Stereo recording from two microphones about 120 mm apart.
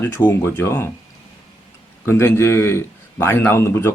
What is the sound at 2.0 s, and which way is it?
Speech, 20° left (ahead or behind).